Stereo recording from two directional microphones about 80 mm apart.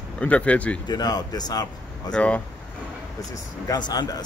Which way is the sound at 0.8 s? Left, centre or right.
Left.